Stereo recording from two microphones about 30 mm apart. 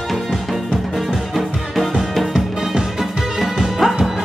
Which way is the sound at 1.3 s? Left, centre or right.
Centre.